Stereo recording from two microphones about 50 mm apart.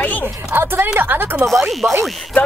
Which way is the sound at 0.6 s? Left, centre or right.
Right.